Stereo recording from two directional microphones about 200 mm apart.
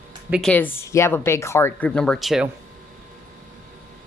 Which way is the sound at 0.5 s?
10° left (ahead or behind).